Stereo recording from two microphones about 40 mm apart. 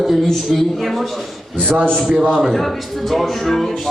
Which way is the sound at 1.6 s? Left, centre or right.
Right.